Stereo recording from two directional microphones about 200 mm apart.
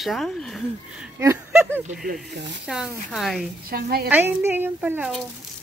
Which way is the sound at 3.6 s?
50° right (ahead or behind).